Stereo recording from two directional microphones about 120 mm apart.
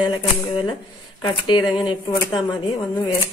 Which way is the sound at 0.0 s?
40° left (ahead or behind).